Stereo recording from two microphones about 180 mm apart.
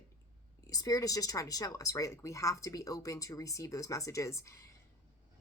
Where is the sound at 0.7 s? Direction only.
20° left (ahead or behind).